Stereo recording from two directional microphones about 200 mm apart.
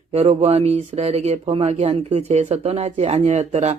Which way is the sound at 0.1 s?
30° right (ahead or behind).